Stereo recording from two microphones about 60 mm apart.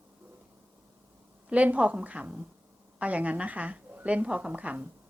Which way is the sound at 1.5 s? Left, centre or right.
Right.